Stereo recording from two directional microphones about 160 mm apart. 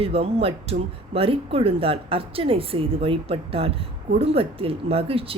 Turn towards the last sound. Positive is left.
turn(degrees=-35)  # may be behind; listen again after turning